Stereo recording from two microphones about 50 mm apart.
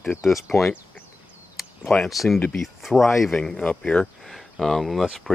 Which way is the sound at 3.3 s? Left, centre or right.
Centre.